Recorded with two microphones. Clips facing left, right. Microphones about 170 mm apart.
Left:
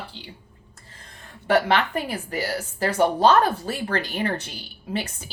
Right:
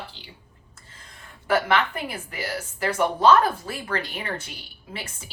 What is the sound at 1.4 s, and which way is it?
A woman's voice, 35° left (ahead or behind).